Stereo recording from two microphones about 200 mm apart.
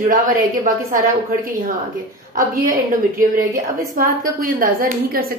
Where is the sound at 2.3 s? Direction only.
40° right (ahead or behind).